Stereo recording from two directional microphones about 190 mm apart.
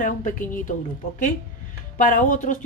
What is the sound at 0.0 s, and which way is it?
Speech, 45° left (ahead or behind).